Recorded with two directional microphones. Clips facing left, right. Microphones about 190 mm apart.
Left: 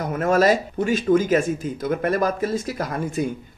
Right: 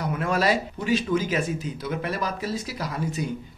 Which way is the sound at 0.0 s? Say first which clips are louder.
Left 6 dB; 45° left (ahead or behind).